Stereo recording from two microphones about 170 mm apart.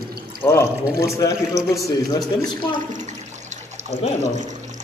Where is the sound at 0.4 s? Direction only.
15° left (ahead or behind).